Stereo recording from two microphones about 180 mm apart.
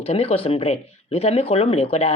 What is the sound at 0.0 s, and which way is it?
Speech, 35° left (ahead or behind).